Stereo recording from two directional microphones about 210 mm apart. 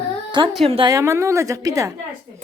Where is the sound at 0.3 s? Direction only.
20° right (ahead or behind).